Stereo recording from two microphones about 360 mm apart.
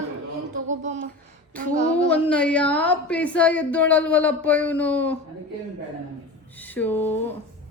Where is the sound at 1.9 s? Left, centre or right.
Centre.